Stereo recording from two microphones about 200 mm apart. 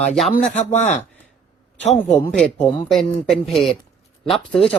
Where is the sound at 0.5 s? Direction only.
35° left (ahead or behind).